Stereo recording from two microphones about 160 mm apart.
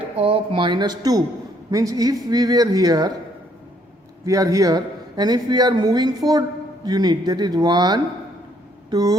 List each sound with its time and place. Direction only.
0.2 s a man's voice: 35° right (ahead or behind)
4.3 s a man's voice: 20° right (ahead or behind)
8.9 s a sound: 25° right (ahead or behind)